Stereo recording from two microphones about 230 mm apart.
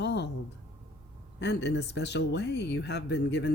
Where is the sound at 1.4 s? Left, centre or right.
Left.